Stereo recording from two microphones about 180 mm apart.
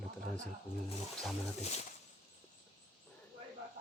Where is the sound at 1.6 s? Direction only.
35° left (ahead or behind).